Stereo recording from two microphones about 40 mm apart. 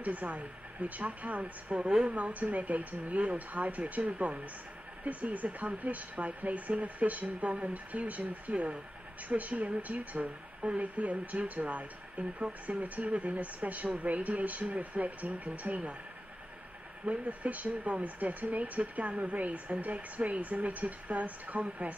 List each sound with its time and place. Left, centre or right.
0.0 s speech: right
1.9 s speech: centre
2.1 s speech: right
17.0 s speech: right